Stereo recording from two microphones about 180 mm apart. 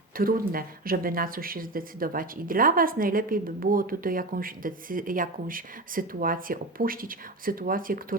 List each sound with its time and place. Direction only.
0.2 s speech: 55° right (ahead or behind)